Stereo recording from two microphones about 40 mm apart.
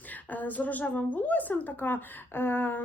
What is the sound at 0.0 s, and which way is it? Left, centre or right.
A woman's voice, left.